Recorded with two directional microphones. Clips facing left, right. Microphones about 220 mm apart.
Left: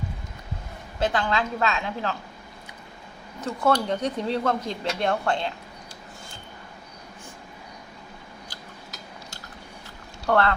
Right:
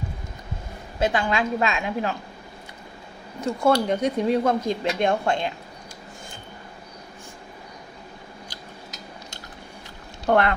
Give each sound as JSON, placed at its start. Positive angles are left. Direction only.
{"t": 1.0, "sound": "speech", "side_deg": -10}
{"t": 3.4, "sound": "speech", "side_deg": -10}
{"t": 10.2, "sound": "speech", "side_deg": -15}